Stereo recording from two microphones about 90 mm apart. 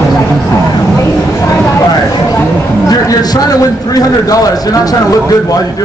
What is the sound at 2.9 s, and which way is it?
A man's voice, 45° left (ahead or behind).